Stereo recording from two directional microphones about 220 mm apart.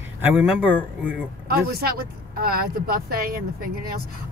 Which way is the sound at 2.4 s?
45° right (ahead or behind).